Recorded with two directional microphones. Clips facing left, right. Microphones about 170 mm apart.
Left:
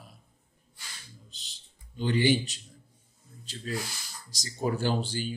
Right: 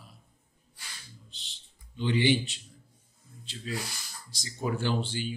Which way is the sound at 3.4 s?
45° left (ahead or behind).